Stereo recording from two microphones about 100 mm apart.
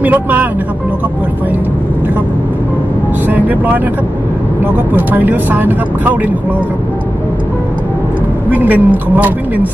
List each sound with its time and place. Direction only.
0.0 s speech: 15° right (ahead or behind)
3.3 s vehicle: 15° right (ahead or behind)
4.9 s speech: 20° right (ahead or behind)
8.5 s speech: 15° right (ahead or behind)